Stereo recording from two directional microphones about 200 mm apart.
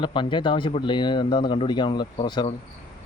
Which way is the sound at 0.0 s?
25° left (ahead or behind).